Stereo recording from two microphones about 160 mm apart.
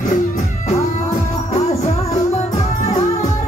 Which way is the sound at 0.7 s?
45° left (ahead or behind).